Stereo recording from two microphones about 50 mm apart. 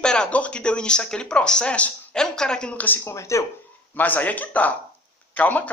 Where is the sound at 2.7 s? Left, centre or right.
Left.